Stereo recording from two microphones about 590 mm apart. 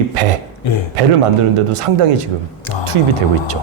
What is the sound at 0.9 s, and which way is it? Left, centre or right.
Speech, right.